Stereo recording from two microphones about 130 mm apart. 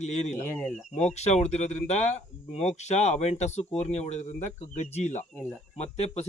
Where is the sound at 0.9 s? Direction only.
60° left (ahead or behind).